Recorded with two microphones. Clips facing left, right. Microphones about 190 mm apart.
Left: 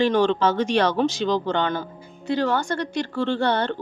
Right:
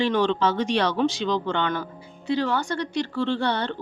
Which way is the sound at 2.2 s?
45° left (ahead or behind).